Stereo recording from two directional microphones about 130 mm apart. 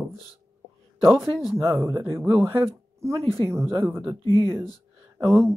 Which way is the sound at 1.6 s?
20° right (ahead or behind).